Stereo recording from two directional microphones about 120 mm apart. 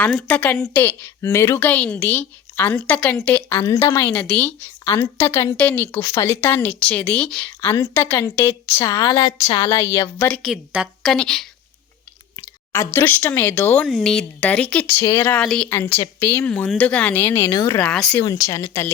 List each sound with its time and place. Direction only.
0.2 s a woman's voice: 15° left (ahead or behind)
3.6 s speech: 25° left (ahead or behind)
4.1 s a woman's voice: 15° left (ahead or behind)
5.5 s a woman's voice: 10° left (ahead or behind)
7.6 s a woman's voice: 20° left (ahead or behind)
8.8 s a woman's voice: 30° left (ahead or behind)
9.6 s speech: 25° left (ahead or behind)
10.4 s a woman's voice: 5° right (ahead or behind)
12.7 s a woman's voice: 20° left (ahead or behind)
13.8 s a woman's voice: 5° left (ahead or behind); by 15.4 s 20° left (ahead or behind)
15.4 s a woman's voice: 5° left (ahead or behind); by 18.9 s 25° left (ahead or behind)